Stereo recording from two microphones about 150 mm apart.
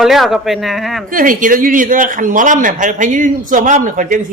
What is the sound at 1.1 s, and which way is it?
A man's voice, 65° right (ahead or behind).